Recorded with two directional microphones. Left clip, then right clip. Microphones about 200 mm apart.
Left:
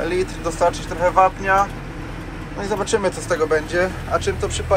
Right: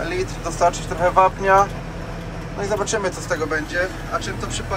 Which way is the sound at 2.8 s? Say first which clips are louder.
Left 2 dB; 10° right (ahead or behind).